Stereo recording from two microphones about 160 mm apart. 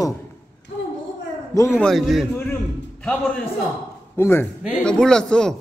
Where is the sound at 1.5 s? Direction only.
20° left (ahead or behind).